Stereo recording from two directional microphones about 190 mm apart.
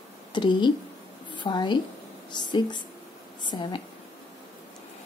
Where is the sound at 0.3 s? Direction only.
25° left (ahead or behind).